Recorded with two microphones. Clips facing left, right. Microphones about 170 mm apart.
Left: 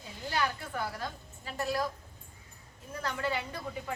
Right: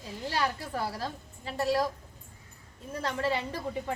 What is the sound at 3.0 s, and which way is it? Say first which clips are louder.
Speech: right 3 dB; 30° right (ahead or behind).